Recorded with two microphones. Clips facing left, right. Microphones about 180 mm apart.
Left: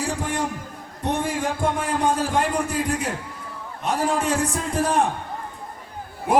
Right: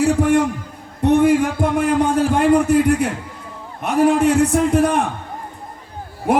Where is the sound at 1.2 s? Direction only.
65° right (ahead or behind).